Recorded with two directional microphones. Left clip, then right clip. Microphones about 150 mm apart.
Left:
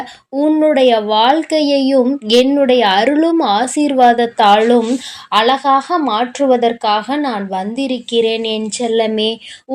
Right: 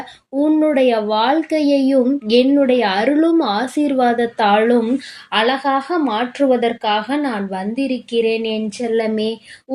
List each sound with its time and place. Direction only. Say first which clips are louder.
0.3 s speech: left 3 dB; 20° left (ahead or behind)
5.3 s speech: left 5 dB; 30° left (ahead or behind)